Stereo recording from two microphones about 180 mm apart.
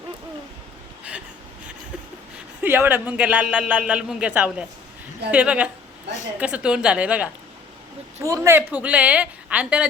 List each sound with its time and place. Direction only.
2.6 s a man's voice: 10° right (ahead or behind)